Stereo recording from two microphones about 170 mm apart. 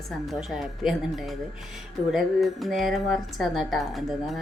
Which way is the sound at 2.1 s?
Centre (ahead or behind).